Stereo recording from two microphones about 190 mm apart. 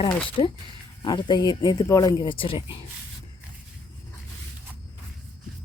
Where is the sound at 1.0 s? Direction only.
25° left (ahead or behind).